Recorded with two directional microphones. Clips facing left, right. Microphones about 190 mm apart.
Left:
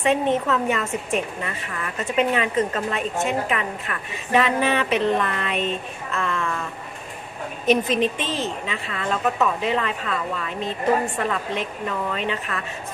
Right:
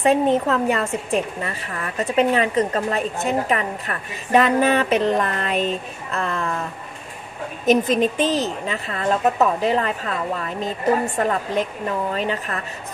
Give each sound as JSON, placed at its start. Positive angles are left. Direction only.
{"t": 0.0, "sound": "a woman's voice", "side_deg": -35}
{"t": 7.6, "sound": "a woman's voice", "side_deg": -45}
{"t": 11.1, "sound": "a woman's voice", "side_deg": -40}